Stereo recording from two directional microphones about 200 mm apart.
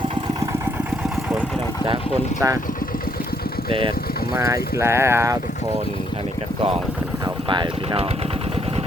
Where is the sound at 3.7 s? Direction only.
25° right (ahead or behind).